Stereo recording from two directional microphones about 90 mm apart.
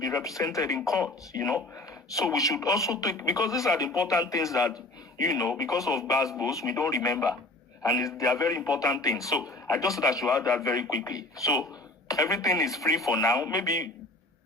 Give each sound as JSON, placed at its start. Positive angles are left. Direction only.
{"t": 0.0, "sound": "a man's voice", "side_deg": 40}